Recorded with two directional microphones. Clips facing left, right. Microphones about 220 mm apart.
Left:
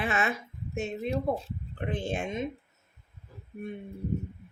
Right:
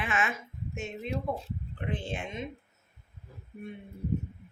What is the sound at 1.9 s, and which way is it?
Speech, 45° left (ahead or behind).